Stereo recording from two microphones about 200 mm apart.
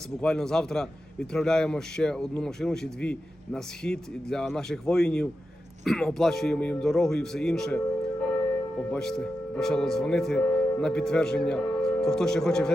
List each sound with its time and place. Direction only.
0.2 s speech: 5° left (ahead or behind)
8.9 s speech: 5° left (ahead or behind)